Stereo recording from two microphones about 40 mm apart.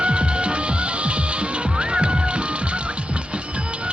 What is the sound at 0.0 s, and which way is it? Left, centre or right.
Music, right.